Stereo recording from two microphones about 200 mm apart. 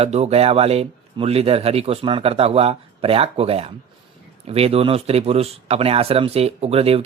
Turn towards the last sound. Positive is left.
turn(degrees=-30)  # may be behind; listen again after turning